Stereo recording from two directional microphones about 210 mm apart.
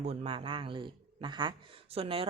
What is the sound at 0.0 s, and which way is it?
A man's voice, 30° right (ahead or behind).